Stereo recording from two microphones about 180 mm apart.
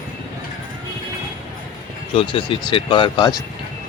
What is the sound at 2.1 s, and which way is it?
Speech, 30° left (ahead or behind).